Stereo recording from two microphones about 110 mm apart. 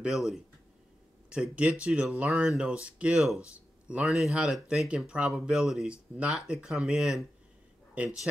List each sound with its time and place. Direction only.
0.0 s speech: 5° right (ahead or behind)